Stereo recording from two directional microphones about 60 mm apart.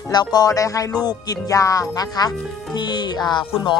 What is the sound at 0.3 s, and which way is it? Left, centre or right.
Speech, left.